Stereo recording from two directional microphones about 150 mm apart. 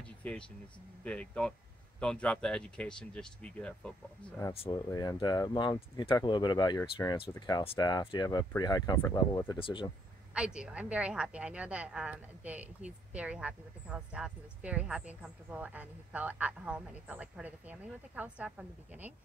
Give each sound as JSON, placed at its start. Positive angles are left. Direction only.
{"t": 0.2, "sound": "speech", "side_deg": 10}
{"t": 4.9, "sound": "speech", "side_deg": 25}
{"t": 10.3, "sound": "speech", "side_deg": -5}